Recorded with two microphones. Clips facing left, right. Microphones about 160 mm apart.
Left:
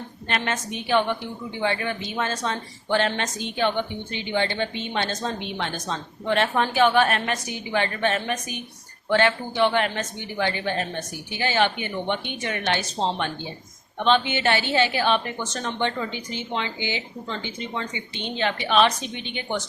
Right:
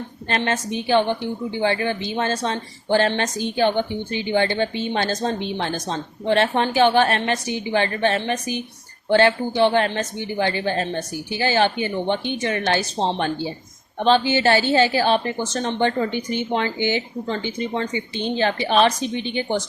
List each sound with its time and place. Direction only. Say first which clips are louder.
0.3 s a woman's voice: right 4 dB; 30° right (ahead or behind)